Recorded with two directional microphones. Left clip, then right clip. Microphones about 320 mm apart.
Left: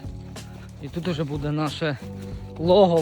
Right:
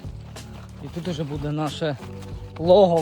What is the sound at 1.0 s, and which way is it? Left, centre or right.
Speech, centre.